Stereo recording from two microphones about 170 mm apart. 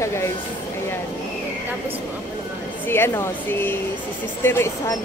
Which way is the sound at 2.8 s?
15° left (ahead or behind).